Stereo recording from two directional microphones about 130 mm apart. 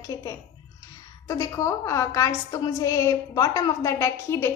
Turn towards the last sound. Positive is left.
turn(degrees=20)  # may be behind; listen again after turning